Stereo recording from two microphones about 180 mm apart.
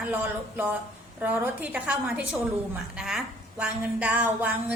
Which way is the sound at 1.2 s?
10° right (ahead or behind).